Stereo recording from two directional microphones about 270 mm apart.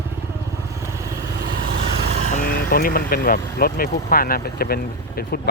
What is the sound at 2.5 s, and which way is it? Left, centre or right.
Speech, left.